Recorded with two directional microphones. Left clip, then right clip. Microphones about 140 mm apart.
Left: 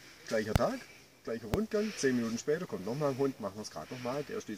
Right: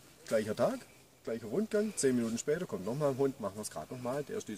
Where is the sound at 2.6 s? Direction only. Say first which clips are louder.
Even; 20° right (ahead or behind).